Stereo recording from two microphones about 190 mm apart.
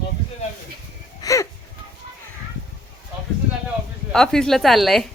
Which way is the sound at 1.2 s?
15° left (ahead or behind).